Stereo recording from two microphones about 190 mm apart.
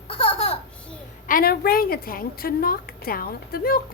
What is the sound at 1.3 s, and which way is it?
A woman's voice, 50° left (ahead or behind).